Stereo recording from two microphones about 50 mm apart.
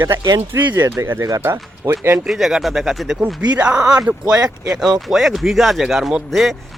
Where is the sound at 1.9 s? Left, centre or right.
Right.